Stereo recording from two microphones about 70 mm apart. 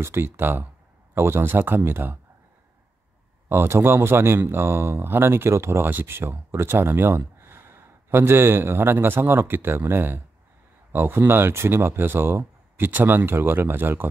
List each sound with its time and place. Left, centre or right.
0.0 s speech: right
3.4 s speech: right